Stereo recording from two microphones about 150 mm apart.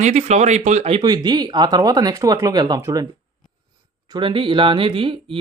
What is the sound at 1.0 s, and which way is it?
Speech, 25° right (ahead or behind).